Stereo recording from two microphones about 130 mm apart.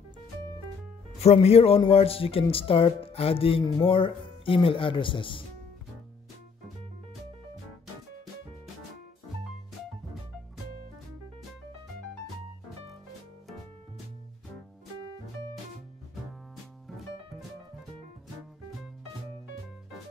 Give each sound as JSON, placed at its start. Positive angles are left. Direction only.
{"t": 1.2, "sound": "a man's voice", "side_deg": 55}